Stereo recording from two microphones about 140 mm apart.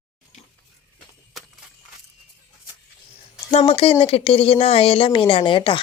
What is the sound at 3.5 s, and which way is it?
Speech, 40° left (ahead or behind).